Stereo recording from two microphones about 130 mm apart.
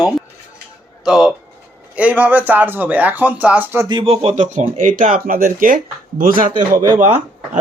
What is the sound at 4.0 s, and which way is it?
Speech, 50° right (ahead or behind).